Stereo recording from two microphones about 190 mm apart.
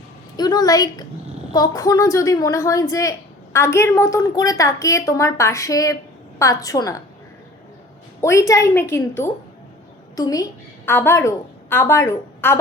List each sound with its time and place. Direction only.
0.3 s a woman's voice: 20° left (ahead or behind)
8.2 s a woman's voice: 15° left (ahead or behind)